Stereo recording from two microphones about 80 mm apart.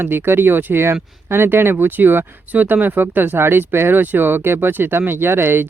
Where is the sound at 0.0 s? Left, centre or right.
Right.